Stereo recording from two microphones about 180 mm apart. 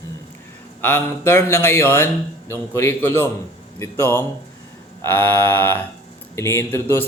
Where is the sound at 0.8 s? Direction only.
10° left (ahead or behind).